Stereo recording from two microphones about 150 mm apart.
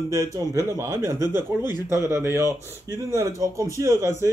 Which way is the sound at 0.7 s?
20° right (ahead or behind).